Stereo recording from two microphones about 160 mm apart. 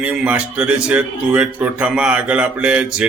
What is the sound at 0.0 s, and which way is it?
A man's voice, 10° right (ahead or behind).